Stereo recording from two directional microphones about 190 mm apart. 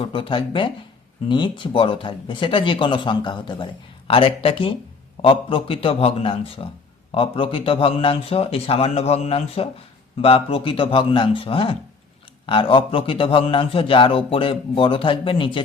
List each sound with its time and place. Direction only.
0.0 s speech: 25° left (ahead or behind)